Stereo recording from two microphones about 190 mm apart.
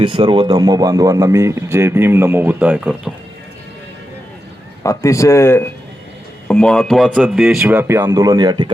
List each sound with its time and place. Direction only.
0.0 s speech: 25° right (ahead or behind); by 3.1 s 5° right (ahead or behind)
4.8 s speech: 15° left (ahead or behind); by 8.7 s 20° right (ahead or behind)